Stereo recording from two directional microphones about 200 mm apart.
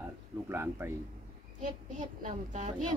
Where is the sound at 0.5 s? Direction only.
10° right (ahead or behind).